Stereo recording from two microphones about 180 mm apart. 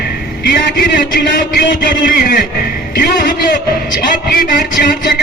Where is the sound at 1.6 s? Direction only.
55° left (ahead or behind).